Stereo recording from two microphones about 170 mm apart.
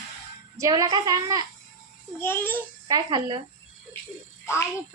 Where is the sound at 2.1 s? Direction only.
10° left (ahead or behind).